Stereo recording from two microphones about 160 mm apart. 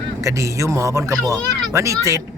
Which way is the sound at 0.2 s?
20° right (ahead or behind).